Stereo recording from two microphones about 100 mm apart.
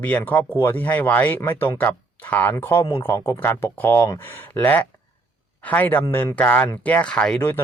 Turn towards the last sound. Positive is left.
turn(degrees=20)  # may be behind; listen again after turning